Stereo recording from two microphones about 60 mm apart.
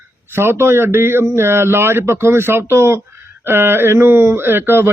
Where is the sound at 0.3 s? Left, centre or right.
Right.